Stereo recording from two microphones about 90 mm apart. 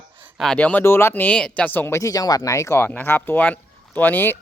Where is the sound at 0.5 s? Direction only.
15° left (ahead or behind).